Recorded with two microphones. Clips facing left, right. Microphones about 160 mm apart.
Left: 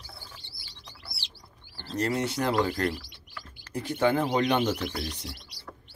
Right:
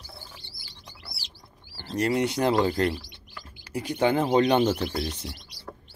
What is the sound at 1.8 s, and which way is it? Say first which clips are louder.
Speech: right 4 dB; 15° right (ahead or behind).